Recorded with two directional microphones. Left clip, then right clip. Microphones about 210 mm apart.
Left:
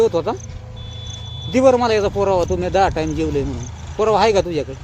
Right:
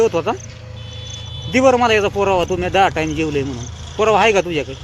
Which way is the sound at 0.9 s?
40° left (ahead or behind).